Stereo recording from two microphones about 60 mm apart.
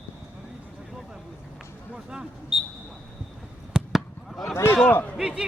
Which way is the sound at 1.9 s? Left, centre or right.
Centre.